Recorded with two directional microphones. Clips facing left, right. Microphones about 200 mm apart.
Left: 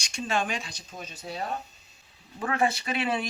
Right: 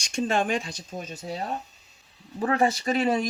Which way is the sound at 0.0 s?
50° right (ahead or behind).